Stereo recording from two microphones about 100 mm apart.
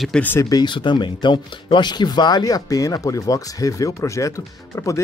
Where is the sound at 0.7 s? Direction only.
55° left (ahead or behind).